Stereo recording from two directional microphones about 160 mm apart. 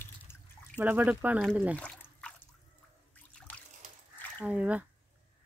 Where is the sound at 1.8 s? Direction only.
5° left (ahead or behind).